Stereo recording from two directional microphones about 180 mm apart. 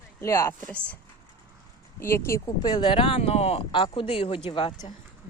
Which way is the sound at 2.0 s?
15° left (ahead or behind).